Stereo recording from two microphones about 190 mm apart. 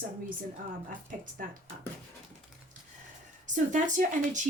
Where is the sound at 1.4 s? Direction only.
45° right (ahead or behind).